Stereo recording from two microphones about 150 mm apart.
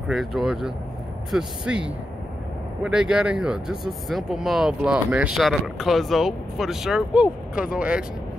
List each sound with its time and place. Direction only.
0.1 s speech: centre (ahead or behind)